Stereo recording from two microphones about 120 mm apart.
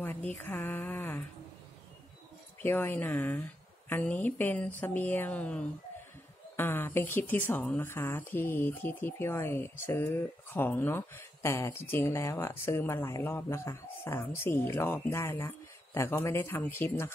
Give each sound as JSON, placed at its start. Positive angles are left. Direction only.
{"t": 0.0, "sound": "a sound", "side_deg": 15}
{"t": 0.4, "sound": "speech", "side_deg": 15}
{"t": 2.6, "sound": "speech", "side_deg": 15}